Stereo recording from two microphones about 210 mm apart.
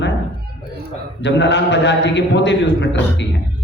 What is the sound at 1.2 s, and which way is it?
A man's voice, 60° left (ahead or behind).